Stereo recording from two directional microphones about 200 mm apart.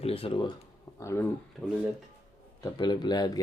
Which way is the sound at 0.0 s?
30° left (ahead or behind).